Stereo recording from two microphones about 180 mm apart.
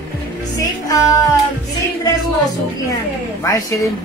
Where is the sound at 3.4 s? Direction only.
20° left (ahead or behind).